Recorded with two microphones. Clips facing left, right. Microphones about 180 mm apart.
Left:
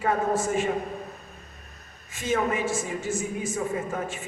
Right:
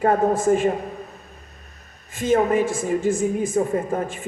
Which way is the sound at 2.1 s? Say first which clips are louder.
Right 7 dB; 55° right (ahead or behind).